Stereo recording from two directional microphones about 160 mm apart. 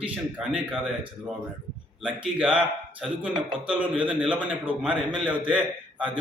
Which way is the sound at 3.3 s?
30° right (ahead or behind).